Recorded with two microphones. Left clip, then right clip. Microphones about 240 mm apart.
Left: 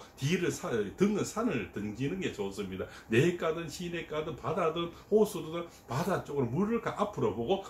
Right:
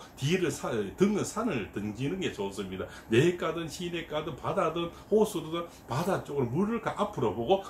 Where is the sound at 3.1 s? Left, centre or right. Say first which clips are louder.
Right 2 dB; centre.